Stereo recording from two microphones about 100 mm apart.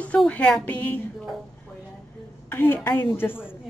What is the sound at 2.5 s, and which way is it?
Speech, 25° left (ahead or behind).